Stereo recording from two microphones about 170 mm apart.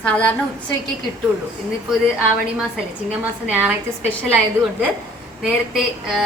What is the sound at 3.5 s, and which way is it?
Speech, 10° right (ahead or behind).